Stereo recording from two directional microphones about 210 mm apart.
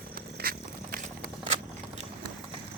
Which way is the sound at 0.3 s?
45° right (ahead or behind).